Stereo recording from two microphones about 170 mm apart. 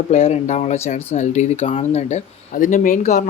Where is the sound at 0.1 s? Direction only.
40° left (ahead or behind).